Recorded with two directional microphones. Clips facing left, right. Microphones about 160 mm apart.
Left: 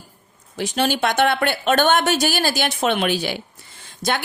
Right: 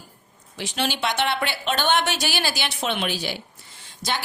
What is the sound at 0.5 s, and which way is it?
Speech, 45° left (ahead or behind).